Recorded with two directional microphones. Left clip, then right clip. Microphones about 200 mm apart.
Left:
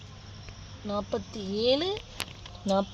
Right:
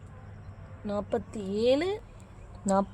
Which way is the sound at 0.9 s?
10° right (ahead or behind).